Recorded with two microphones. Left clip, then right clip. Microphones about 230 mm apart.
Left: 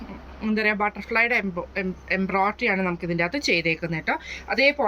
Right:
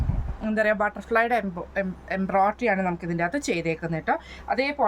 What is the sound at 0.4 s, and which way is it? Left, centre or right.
Speech, centre.